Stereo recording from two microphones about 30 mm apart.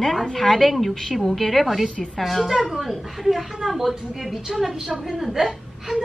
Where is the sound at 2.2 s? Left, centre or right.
Centre.